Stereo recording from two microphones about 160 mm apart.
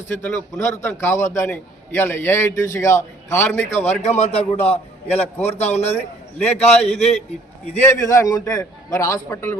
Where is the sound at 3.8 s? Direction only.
45° left (ahead or behind).